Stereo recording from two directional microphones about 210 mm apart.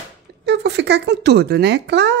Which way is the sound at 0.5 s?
55° right (ahead or behind).